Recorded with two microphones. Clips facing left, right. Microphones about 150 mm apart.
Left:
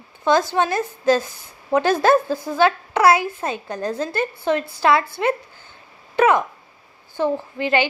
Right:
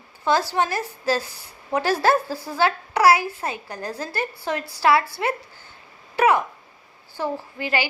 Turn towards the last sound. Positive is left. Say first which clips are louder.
# left 5 dB
turn(degrees=20)  # may be behind; listen again after turning